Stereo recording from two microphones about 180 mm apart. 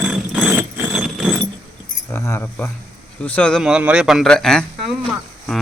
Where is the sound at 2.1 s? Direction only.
15° left (ahead or behind).